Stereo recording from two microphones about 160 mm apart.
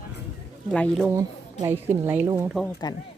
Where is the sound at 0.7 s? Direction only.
5° left (ahead or behind).